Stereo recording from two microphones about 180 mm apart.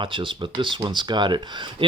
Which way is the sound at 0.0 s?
25° right (ahead or behind).